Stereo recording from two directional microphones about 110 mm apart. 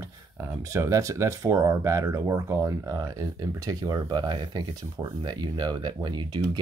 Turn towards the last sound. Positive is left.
turn(degrees=-40)  # may be behind; listen again after turning